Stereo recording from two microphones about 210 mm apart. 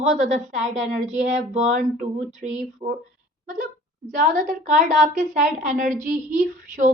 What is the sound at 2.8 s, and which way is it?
Speech, 25° right (ahead or behind).